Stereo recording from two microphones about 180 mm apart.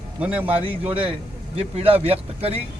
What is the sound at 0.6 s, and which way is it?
Speech, 30° right (ahead or behind).